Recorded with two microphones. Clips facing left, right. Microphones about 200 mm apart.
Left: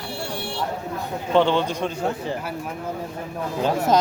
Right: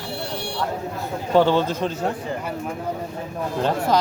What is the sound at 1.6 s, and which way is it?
Speech, 15° left (ahead or behind).